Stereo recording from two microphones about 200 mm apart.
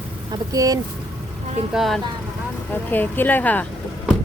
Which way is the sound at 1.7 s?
Centre (ahead or behind).